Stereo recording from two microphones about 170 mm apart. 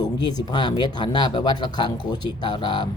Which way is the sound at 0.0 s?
25° left (ahead or behind).